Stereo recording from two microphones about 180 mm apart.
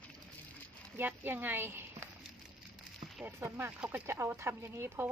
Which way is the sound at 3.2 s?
15° right (ahead or behind).